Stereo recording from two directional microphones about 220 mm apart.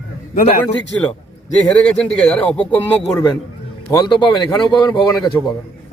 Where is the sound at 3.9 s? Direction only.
20° left (ahead or behind).